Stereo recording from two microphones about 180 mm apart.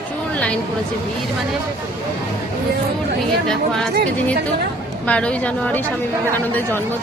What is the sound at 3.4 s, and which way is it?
Speech, centre (ahead or behind).